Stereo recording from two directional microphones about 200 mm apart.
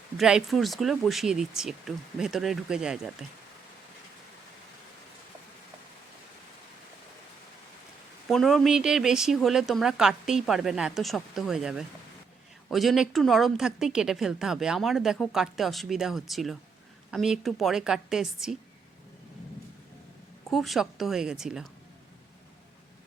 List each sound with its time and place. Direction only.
0.2 s a woman's voice: 5° right (ahead or behind)
8.3 s a woman's voice: centre (ahead or behind)
20.5 s a woman's voice: centre (ahead or behind)